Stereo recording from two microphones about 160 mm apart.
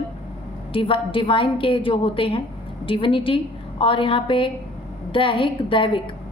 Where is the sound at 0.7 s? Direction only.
35° left (ahead or behind).